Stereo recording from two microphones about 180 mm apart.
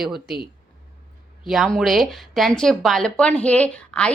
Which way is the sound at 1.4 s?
Centre (ahead or behind).